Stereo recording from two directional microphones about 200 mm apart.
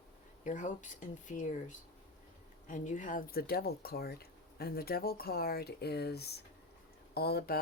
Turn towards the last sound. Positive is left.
turn(degrees=50)  # may be behind; listen again after turning